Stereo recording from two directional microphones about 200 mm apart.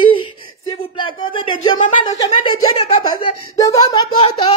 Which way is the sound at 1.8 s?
40° left (ahead or behind).